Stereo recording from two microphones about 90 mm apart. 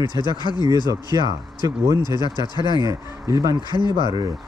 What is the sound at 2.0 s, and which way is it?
Speech, 55° left (ahead or behind).